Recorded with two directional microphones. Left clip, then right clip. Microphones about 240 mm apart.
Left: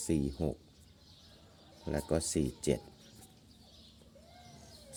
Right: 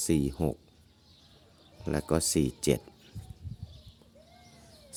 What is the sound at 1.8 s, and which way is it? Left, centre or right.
Speech, right.